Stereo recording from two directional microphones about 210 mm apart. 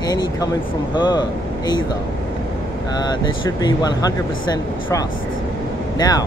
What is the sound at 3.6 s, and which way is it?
Speech, 20° left (ahead or behind).